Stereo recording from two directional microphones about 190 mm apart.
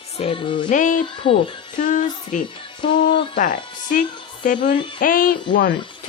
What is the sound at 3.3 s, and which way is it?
Speech, 45° left (ahead or behind).